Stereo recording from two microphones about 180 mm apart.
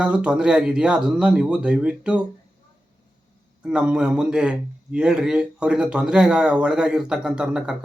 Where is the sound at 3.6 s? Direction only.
5° right (ahead or behind).